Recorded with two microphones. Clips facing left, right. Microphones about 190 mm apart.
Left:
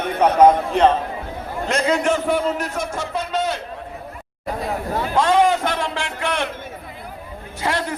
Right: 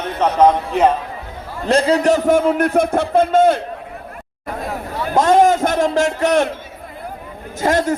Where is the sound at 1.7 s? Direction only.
35° right (ahead or behind); by 3.6 s 50° right (ahead or behind).